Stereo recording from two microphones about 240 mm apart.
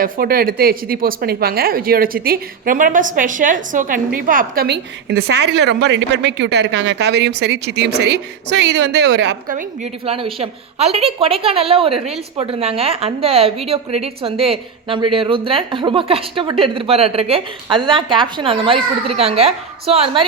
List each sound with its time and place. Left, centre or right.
0.0 s a woman's voice: right
9.5 s a woman's voice: right